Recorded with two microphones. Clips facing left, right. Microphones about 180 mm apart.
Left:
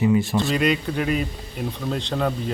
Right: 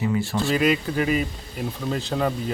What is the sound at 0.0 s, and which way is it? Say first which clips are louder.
Speech: left 5 dB; 20° left (ahead or behind).